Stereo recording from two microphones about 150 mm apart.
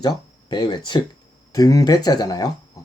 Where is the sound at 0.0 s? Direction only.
30° left (ahead or behind).